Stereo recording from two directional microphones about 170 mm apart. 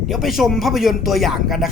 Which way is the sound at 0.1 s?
Centre (ahead or behind).